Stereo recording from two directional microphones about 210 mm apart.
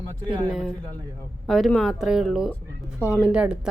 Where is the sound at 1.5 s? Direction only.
Centre (ahead or behind).